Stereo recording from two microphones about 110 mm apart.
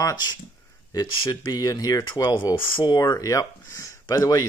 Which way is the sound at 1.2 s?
45° left (ahead or behind).